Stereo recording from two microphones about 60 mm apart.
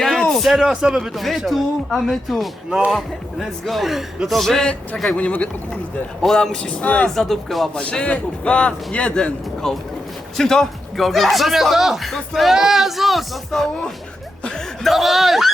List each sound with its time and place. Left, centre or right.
0.0 s a sound: centre
0.6 s a man's voice: centre
1.5 s a man's voice: centre
5.1 s a man's voice: left
6.2 s a man's voice: centre
7.2 s a man's voice: centre
7.8 s a man's voice: centre
9.6 s a man's voice: centre